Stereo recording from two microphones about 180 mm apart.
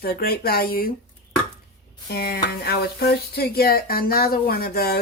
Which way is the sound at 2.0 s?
60° left (ahead or behind).